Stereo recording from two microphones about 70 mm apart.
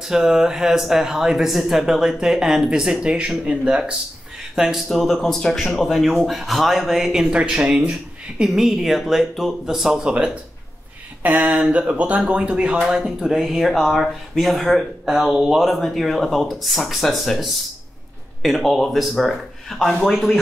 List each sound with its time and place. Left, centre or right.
0.0 s speech: centre
7.3 s speech: centre